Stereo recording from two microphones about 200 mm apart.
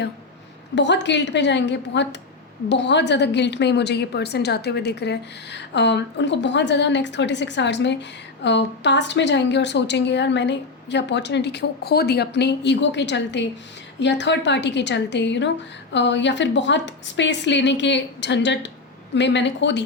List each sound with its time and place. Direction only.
0.8 s a woman's voice: 60° left (ahead or behind)